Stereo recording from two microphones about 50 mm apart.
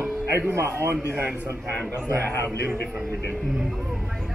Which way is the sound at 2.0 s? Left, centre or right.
Right.